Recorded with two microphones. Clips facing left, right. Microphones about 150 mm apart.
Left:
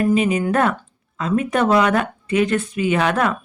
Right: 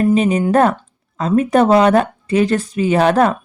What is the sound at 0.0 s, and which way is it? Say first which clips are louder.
Speech: right 3 dB; 35° right (ahead or behind).